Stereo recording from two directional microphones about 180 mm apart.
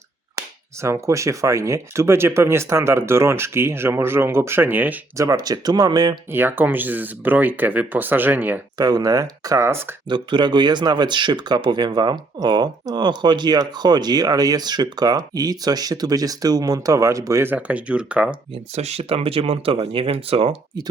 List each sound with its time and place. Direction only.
0.8 s speech: 15° right (ahead or behind)
6.3 s speech: 10° right (ahead or behind)
8.8 s speech: 20° right (ahead or behind)
10.1 s speech: 25° right (ahead or behind); by 18.3 s 5° right (ahead or behind)
18.5 s speech: 35° right (ahead or behind)